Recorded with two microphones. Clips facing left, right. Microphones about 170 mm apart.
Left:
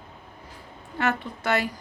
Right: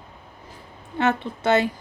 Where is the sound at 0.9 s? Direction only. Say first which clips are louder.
Right 4 dB; 20° right (ahead or behind).